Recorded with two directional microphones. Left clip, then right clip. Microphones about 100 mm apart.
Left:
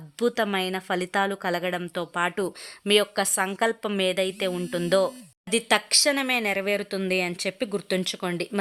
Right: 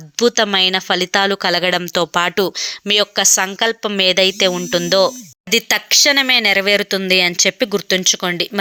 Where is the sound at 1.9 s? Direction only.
60° right (ahead or behind).